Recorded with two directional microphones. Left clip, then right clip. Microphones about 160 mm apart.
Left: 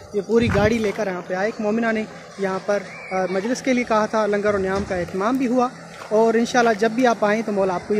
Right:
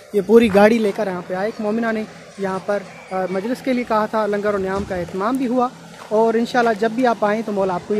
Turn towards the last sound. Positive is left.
turn(degrees=-5)  # may be behind; listen again after turning